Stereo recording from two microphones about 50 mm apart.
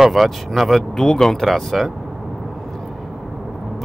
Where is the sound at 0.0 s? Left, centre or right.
Centre.